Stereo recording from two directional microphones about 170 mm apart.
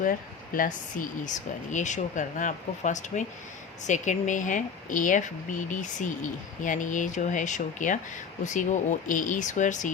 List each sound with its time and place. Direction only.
0.0 s speech: 50° left (ahead or behind)